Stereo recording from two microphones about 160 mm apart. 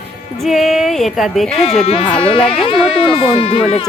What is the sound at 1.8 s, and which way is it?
Speech, 40° left (ahead or behind).